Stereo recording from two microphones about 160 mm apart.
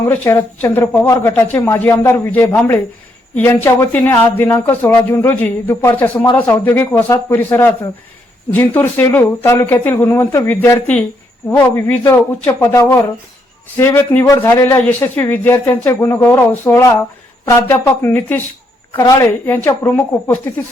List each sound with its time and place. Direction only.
0.0 s a man's voice: 15° left (ahead or behind)